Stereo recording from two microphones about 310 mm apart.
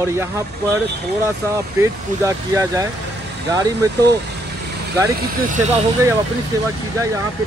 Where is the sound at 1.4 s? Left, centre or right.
Centre.